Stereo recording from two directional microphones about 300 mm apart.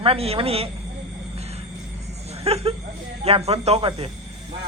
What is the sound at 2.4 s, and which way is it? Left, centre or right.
A woman's voice, centre.